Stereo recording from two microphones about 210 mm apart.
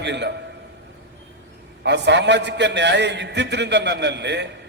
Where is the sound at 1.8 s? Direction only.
55° right (ahead or behind).